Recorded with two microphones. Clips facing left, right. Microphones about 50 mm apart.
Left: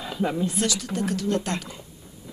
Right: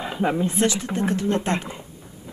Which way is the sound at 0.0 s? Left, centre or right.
Right.